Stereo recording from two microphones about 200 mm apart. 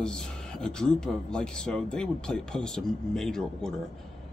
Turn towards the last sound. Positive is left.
turn(degrees=5)  # may be behind; listen again after turning